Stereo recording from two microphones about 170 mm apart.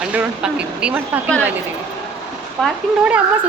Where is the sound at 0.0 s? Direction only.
5° right (ahead or behind).